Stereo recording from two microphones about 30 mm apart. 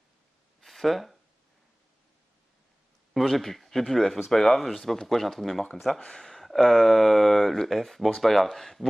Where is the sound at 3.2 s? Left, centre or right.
Centre.